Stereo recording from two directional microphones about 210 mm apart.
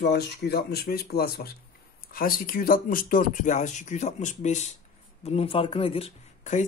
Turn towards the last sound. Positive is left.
turn(degrees=30)  # may be behind; listen again after turning